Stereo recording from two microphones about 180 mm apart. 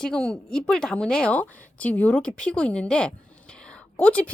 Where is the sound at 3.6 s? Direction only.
5° left (ahead or behind).